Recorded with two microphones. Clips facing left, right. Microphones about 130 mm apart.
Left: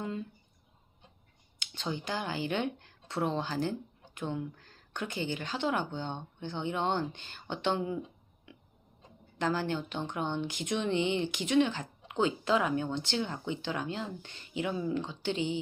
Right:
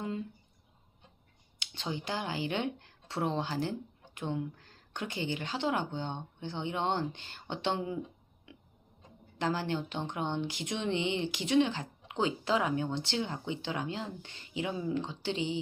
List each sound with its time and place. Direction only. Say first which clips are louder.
1.5 s a sound: left 1 dB; 25° right (ahead or behind)
2.0 s speech: even; 25° right (ahead or behind)
9.4 s speech: left 1 dB; 30° right (ahead or behind)